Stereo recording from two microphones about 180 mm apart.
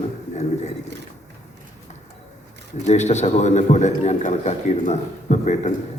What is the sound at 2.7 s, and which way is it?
A man's voice, 40° left (ahead or behind).